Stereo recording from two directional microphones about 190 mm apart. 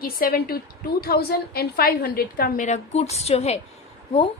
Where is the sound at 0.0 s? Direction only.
50° left (ahead or behind).